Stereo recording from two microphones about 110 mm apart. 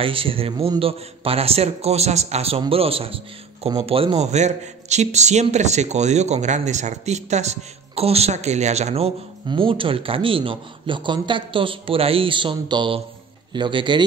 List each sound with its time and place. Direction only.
0.0 s a man's voice: 55° right (ahead or behind); by 2.6 s 70° right (ahead or behind)
2.7 s a man's voice: 60° right (ahead or behind)
9.5 s speech: 50° right (ahead or behind)